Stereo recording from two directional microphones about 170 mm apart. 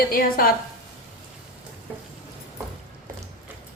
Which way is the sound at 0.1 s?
60° left (ahead or behind).